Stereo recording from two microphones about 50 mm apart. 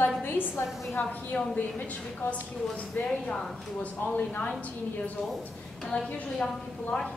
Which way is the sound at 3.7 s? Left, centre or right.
Left.